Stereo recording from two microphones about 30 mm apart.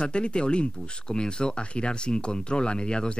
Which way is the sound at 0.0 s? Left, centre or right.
Left.